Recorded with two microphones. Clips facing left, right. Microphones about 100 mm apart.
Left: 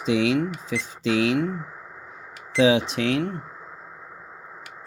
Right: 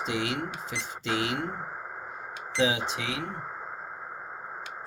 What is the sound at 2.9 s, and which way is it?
Speech, 75° left (ahead or behind).